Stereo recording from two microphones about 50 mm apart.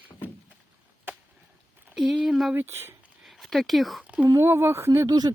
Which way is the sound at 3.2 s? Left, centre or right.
Centre.